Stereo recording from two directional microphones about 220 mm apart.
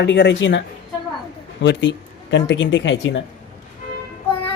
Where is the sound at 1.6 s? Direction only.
55° left (ahead or behind).